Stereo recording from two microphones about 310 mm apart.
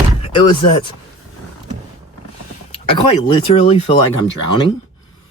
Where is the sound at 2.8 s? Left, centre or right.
Centre.